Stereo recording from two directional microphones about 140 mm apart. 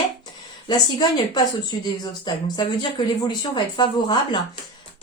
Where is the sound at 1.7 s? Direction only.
30° left (ahead or behind).